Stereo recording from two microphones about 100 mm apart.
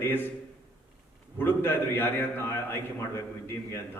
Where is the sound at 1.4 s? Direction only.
20° left (ahead or behind).